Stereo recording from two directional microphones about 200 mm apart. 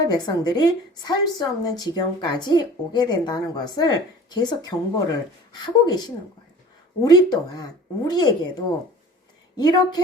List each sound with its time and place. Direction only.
0.0 s a woman's voice: 20° left (ahead or behind)